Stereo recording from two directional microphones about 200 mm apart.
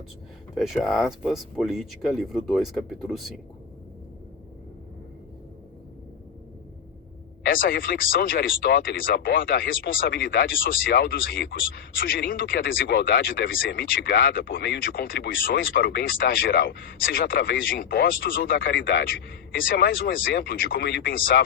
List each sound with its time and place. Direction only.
0.5 s speech: centre (ahead or behind)
7.4 s speech: 45° left (ahead or behind)